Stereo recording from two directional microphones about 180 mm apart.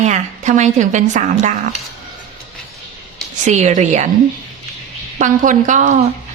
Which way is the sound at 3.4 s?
40° right (ahead or behind).